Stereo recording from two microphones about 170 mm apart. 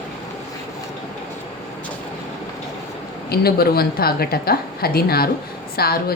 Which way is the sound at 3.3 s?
65° left (ahead or behind).